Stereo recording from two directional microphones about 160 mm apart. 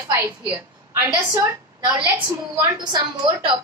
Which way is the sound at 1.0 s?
15° right (ahead or behind).